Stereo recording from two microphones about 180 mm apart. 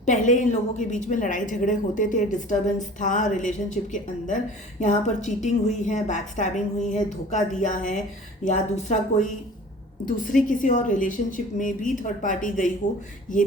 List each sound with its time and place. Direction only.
0.0 s a woman's voice: 45° left (ahead or behind)